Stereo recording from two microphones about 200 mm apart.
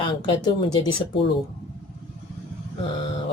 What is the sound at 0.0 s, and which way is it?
Speech, 25° left (ahead or behind).